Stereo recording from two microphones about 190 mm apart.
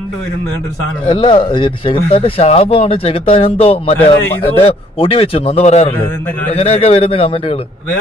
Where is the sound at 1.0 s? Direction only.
25° left (ahead or behind).